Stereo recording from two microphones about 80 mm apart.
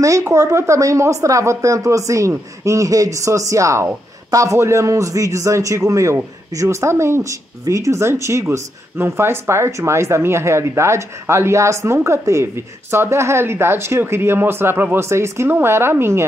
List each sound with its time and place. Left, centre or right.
0.3 s speech: right